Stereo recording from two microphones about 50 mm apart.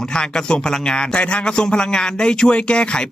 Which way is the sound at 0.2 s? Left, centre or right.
Centre.